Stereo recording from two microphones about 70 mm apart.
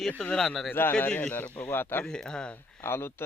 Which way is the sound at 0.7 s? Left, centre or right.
Left.